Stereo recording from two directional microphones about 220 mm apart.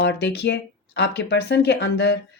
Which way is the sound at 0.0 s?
50° left (ahead or behind).